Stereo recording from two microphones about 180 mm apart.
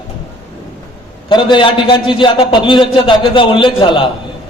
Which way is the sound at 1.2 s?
25° left (ahead or behind).